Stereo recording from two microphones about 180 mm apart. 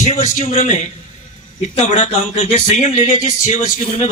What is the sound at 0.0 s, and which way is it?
A man's voice, 40° left (ahead or behind).